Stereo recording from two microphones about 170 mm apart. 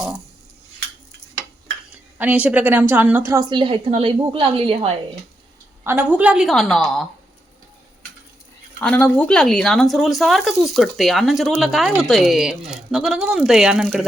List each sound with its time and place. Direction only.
2.1 s a woman's voice: 10° right (ahead or behind); by 4.9 s 35° right (ahead or behind)
5.8 s speech: 10° right (ahead or behind)
8.8 s speech: 10° left (ahead or behind)